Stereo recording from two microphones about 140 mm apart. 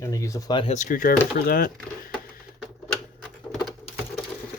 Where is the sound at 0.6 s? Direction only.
60° left (ahead or behind); by 1.7 s 90° left.